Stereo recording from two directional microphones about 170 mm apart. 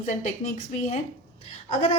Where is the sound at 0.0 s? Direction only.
45° left (ahead or behind).